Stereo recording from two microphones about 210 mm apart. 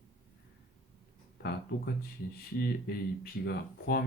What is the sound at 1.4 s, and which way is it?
Speech, 50° left (ahead or behind).